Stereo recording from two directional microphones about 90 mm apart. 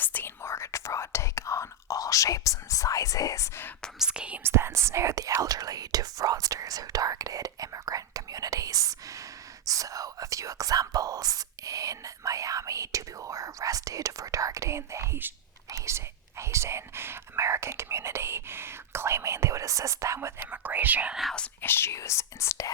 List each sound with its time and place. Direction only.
0.0 s whispering: 20° left (ahead or behind)
3.9 s speech: 10° right (ahead or behind)
4.4 s speech: 30° right (ahead or behind)
21.6 s speech: 25° left (ahead or behind)